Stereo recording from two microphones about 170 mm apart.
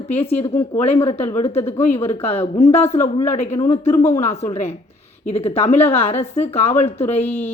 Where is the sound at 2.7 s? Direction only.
15° left (ahead or behind).